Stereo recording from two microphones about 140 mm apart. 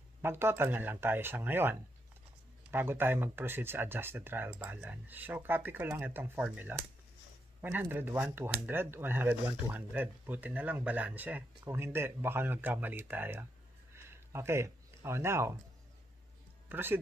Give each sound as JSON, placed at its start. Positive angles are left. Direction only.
{"t": 0.2, "sound": "speech", "side_deg": -15}
{"t": 16.6, "sound": "speech", "side_deg": -15}